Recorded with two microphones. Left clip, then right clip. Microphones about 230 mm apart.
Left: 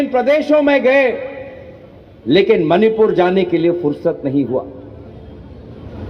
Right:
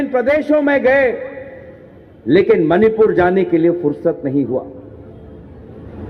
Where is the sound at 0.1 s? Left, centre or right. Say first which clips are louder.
Even; right.